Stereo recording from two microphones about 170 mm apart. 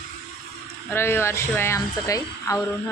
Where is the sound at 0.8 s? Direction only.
15° left (ahead or behind).